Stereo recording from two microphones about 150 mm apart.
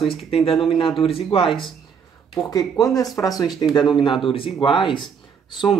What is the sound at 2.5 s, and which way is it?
Speech, 25° left (ahead or behind).